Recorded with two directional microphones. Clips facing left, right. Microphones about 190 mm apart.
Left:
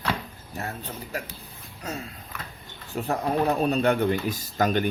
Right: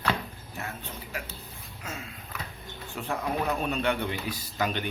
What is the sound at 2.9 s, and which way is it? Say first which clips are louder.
Speech: left 5 dB; 40° left (ahead or behind).